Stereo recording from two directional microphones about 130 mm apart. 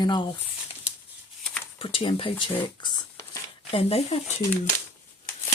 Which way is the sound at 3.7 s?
50° left (ahead or behind).